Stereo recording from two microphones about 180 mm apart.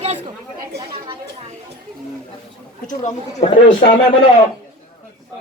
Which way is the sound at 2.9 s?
45° left (ahead or behind).